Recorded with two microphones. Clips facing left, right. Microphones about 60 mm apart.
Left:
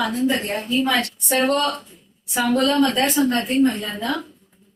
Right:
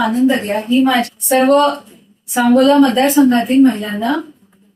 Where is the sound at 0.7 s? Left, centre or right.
Centre.